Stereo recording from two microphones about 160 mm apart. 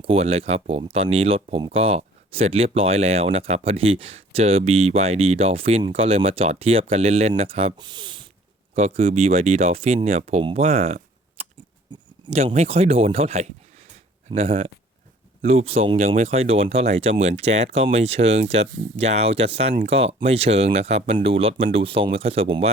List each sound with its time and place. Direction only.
0.0 s speech: 40° right (ahead or behind)
8.7 s speech: 40° right (ahead or behind)